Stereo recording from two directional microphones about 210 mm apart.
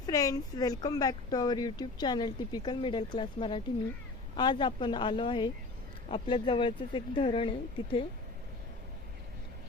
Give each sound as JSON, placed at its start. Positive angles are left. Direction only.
{"t": 0.0, "sound": "speech", "side_deg": 15}